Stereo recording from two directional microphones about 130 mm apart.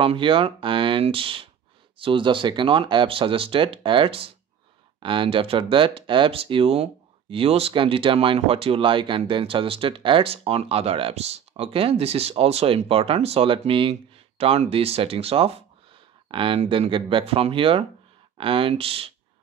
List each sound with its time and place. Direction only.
0.0 s speech: 40° right (ahead or behind)